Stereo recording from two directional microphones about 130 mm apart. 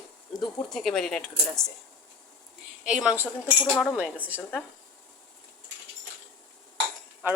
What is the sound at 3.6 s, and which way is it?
Speech, 10° left (ahead or behind).